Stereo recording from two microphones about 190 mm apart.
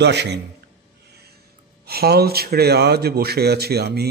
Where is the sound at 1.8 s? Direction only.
55° right (ahead or behind).